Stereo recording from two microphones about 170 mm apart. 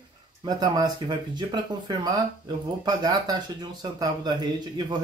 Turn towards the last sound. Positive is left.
turn(degrees=-25)  # may be behind; listen again after turning